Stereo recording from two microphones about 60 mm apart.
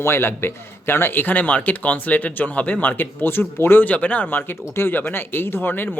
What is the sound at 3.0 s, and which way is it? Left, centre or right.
Speech, left.